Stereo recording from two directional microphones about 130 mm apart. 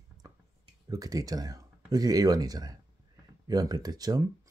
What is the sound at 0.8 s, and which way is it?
Speech, 30° right (ahead or behind).